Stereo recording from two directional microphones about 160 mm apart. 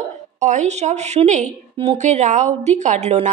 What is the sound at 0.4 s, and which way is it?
A woman's voice, 50° right (ahead or behind).